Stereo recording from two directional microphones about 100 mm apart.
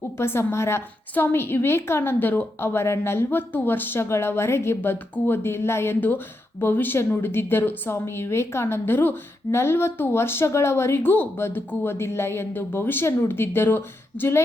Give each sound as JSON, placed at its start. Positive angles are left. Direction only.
{"t": 0.2, "sound": "a woman's voice", "side_deg": 25}